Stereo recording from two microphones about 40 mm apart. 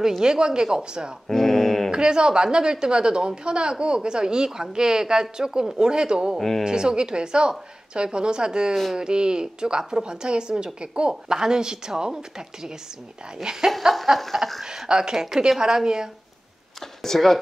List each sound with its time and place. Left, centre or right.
0.2 s a woman's voice: centre
1.3 s mantra: centre
1.9 s a woman's voice: right
14.2 s a sound: centre
14.6 s a sound: centre
14.9 s a woman's voice: centre
17.0 s speech: centre